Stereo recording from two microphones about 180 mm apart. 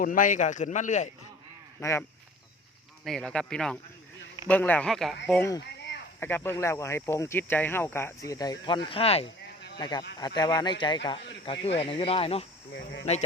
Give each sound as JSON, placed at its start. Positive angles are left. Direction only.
{"t": 0.0, "sound": "speech", "side_deg": 50}
{"t": 1.8, "sound": "speech", "side_deg": 15}
{"t": 3.0, "sound": "speech", "side_deg": 0}
{"t": 5.4, "sound": "speech", "side_deg": 20}
{"t": 12.7, "sound": "speech", "side_deg": 75}